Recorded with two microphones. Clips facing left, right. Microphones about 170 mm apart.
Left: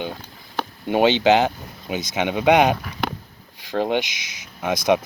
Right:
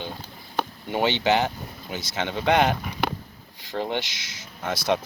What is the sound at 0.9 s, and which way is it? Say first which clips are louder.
Speech: left 7 dB; 15° left (ahead or behind).